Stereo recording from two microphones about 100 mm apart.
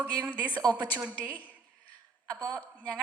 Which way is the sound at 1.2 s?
15° left (ahead or behind).